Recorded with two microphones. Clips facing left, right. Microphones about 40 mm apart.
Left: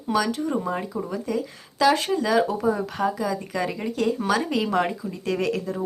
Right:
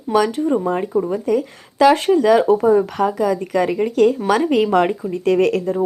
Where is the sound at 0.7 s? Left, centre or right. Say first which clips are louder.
Right 9 dB; right.